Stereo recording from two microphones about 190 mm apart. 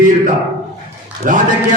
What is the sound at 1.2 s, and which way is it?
Speech, 45° right (ahead or behind).